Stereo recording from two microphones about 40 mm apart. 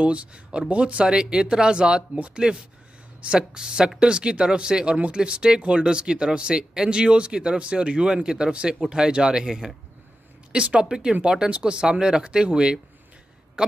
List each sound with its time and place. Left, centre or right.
0.0 s speech: right
3.3 s speech: centre